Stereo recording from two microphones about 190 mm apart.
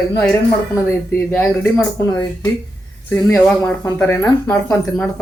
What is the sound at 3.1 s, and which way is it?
Speech, 10° left (ahead or behind).